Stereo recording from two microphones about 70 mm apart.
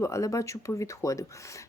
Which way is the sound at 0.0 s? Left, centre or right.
Left.